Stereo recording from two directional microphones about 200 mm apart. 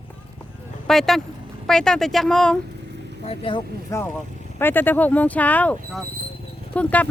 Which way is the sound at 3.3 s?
25° left (ahead or behind).